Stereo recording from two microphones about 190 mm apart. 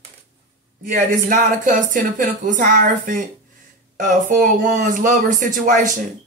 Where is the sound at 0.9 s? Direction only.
45° right (ahead or behind).